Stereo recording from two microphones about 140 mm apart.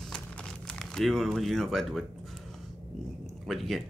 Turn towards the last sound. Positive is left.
turn(degrees=0)  # may be behind; listen again after turning